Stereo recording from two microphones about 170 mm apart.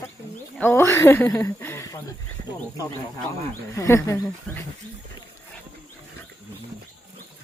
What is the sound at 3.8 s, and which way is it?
Speech, 20° left (ahead or behind).